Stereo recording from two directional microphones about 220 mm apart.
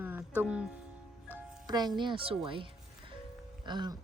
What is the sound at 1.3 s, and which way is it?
Speech, 20° right (ahead or behind).